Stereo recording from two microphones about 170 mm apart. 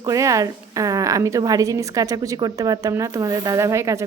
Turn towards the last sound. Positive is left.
turn(degrees=-15)  # may be behind; listen again after turning